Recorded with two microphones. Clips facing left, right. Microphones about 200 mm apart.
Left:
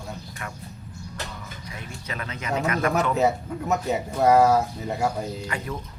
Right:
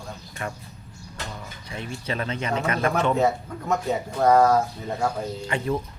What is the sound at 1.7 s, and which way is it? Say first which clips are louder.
Speech: right 7 dB; 30° right (ahead or behind).